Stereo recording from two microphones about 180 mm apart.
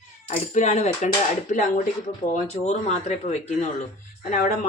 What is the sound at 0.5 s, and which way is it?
Speech, 40° left (ahead or behind).